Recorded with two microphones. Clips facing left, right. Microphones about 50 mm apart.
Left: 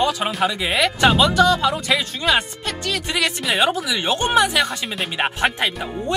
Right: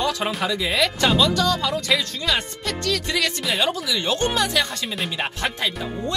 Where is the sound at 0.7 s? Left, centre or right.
Left.